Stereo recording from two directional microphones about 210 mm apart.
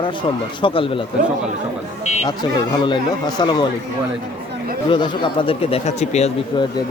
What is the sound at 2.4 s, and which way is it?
Speech, 20° left (ahead or behind).